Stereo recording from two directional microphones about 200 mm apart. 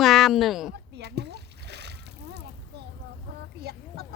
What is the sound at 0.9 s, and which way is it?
Splash, 55° right (ahead or behind).